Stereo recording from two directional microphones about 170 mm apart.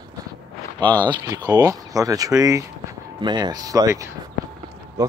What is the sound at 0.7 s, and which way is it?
Speech, 25° right (ahead or behind).